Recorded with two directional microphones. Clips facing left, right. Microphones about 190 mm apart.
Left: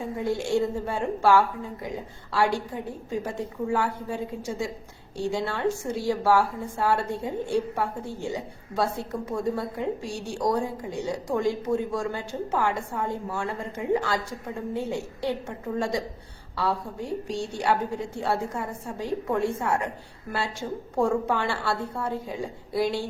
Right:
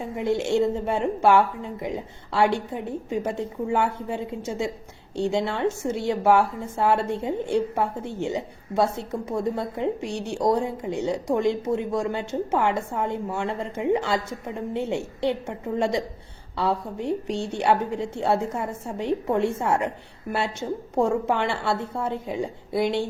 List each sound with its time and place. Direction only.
0.0 s a woman's voice: 25° right (ahead or behind)